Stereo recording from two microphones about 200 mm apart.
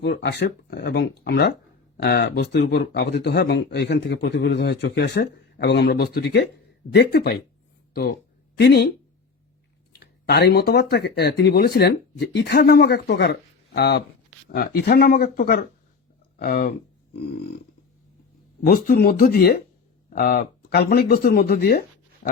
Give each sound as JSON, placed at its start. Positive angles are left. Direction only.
{"t": 0.0, "sound": "speech", "side_deg": 55}
{"t": 8.5, "sound": "speech", "side_deg": 55}
{"t": 10.0, "sound": "speech", "side_deg": 55}
{"t": 18.6, "sound": "speech", "side_deg": 50}